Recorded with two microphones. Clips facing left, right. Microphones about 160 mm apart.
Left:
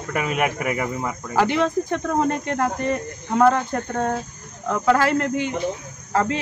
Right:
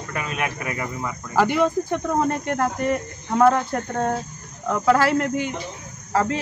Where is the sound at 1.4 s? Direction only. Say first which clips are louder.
Right 1 dB; 5° right (ahead or behind).